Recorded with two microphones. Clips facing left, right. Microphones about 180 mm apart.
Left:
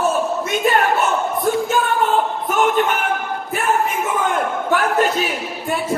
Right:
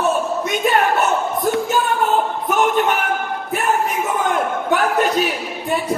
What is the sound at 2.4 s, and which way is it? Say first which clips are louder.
Music: right 1 dB; centre (ahead or behind).